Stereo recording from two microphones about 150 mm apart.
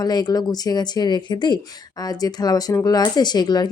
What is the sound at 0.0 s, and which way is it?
Speech, 25° left (ahead or behind).